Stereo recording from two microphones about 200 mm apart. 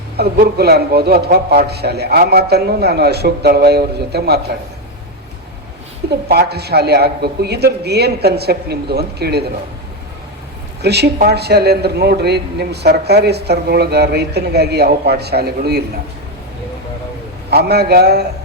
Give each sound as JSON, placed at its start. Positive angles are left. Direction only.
{"t": 0.2, "sound": "a man's voice", "side_deg": -50}
{"t": 6.2, "sound": "a man's voice", "side_deg": -55}
{"t": 10.8, "sound": "speech", "side_deg": -55}
{"t": 17.5, "sound": "a man's voice", "side_deg": -55}